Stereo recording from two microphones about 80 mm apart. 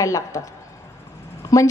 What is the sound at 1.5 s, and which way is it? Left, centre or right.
Speech, left.